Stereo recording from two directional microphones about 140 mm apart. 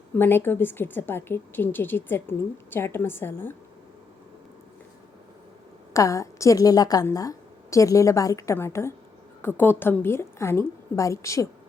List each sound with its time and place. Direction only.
0.2 s a woman's voice: 15° left (ahead or behind)
5.9 s a woman's voice: 20° left (ahead or behind)